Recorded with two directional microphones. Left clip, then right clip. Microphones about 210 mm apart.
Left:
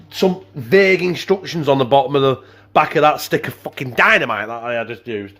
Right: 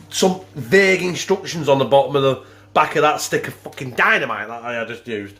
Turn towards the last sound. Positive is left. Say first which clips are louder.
# left 2 dB
turn(degrees=40)  # may be behind; listen again after turning